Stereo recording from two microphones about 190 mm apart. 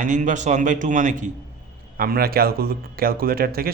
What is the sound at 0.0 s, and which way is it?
Speech, 40° right (ahead or behind).